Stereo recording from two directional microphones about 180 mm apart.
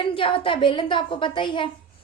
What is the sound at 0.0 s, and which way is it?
A child's voice, 30° left (ahead or behind).